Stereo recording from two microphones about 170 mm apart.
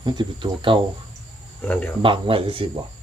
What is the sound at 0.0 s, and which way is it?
Speech, 25° right (ahead or behind).